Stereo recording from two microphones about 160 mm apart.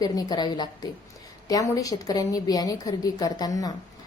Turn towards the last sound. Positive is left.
turn(degrees=25)  # may be behind; listen again after turning